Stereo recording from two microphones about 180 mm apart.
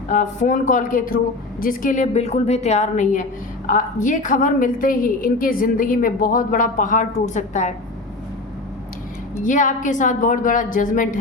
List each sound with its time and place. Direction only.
0.1 s a woman's voice: 45° left (ahead or behind)
9.4 s a woman's voice: 45° left (ahead or behind)